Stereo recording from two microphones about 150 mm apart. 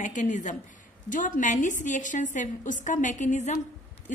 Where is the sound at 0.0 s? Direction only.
55° left (ahead or behind).